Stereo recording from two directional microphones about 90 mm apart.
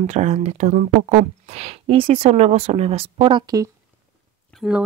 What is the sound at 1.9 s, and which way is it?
Speech, 90° right.